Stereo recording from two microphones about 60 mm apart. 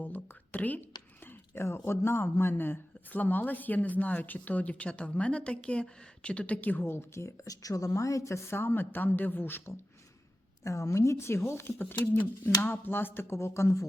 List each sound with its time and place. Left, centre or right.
0.5 s a sound: left
1.6 s speech: left
6.8 s speech: left
7.4 s a woman's voice: left
10.6 s a woman's voice: left